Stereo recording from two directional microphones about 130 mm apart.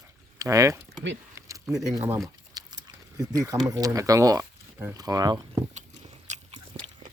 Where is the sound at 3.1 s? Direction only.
25° right (ahead or behind).